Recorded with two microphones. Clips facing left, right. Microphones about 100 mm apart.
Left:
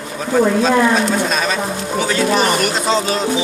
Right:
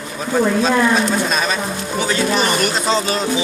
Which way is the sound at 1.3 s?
20° right (ahead or behind).